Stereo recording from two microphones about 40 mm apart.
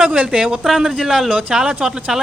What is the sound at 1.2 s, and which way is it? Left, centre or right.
Speech, right.